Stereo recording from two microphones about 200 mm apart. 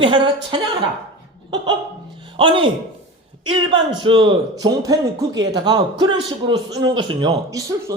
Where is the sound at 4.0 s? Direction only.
25° right (ahead or behind).